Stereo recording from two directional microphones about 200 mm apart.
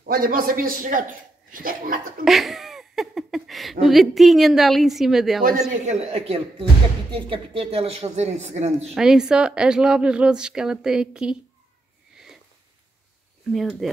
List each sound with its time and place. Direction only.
0.0 s a man's voice: 50° right (ahead or behind)
2.2 s a woman's voice: centre (ahead or behind)
5.7 s speech: 35° right (ahead or behind)
8.9 s a woman's voice: 5° right (ahead or behind)
13.5 s a woman's voice: centre (ahead or behind)